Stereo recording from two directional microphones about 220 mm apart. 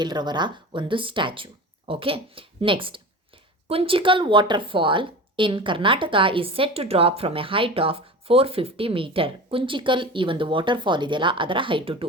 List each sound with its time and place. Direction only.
0.0 s speech: 20° right (ahead or behind)